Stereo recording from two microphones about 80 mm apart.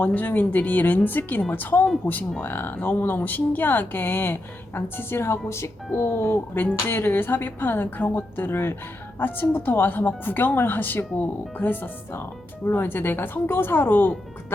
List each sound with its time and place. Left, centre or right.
0.0 s speech: left